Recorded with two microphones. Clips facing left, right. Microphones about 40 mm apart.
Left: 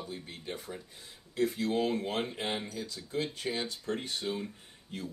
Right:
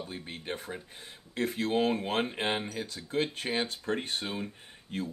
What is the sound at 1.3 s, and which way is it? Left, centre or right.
Speech, right.